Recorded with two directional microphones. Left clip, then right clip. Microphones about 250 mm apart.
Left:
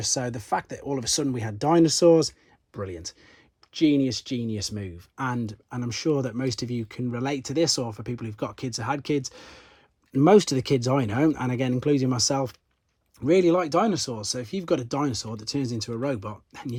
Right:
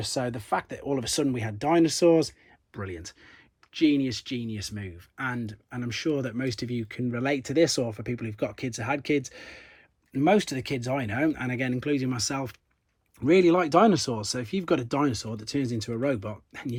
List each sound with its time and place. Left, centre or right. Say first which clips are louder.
0.0 s speech: left 2 dB; centre